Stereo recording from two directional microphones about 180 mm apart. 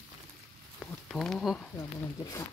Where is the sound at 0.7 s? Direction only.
5° left (ahead or behind).